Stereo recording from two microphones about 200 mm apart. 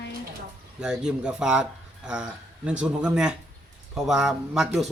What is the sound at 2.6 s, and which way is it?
A man's voice, 5° right (ahead or behind).